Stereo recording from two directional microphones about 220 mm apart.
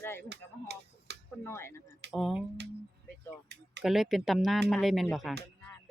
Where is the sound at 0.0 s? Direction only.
10° left (ahead or behind).